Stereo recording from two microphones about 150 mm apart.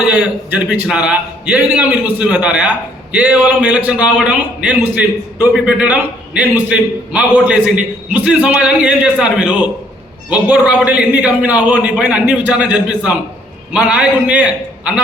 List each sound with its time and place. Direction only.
0.0 s a man's voice: 10° right (ahead or behind)